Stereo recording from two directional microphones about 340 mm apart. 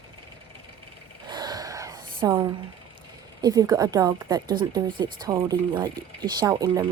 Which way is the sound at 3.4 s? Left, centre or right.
Centre.